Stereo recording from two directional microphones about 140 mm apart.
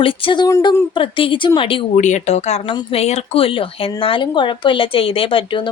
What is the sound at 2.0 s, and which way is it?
Speech, 60° left (ahead or behind).